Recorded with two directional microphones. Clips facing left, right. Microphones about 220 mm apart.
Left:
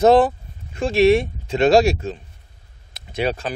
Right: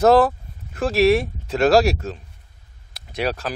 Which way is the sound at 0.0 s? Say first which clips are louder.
Left 1 dB; centre (ahead or behind).